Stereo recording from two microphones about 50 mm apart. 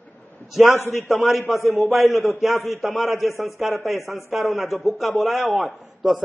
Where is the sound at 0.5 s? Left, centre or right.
Centre.